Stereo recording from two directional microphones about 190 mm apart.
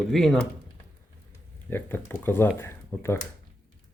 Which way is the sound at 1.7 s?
10° left (ahead or behind).